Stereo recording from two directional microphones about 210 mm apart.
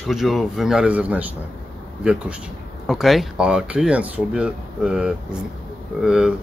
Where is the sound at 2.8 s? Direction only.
Centre (ahead or behind).